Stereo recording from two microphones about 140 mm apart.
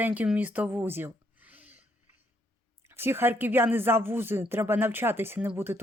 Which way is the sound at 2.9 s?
15° right (ahead or behind).